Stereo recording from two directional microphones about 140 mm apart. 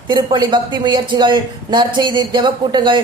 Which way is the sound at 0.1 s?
30° right (ahead or behind).